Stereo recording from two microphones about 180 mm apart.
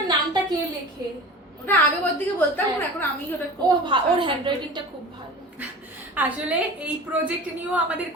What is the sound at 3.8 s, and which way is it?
A woman's voice, 25° right (ahead or behind).